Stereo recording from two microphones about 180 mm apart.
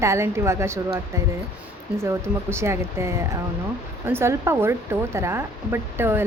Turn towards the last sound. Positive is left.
turn(degrees=-15)  # may be behind; listen again after turning